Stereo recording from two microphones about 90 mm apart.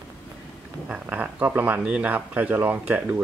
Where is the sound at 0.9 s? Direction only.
15° right (ahead or behind).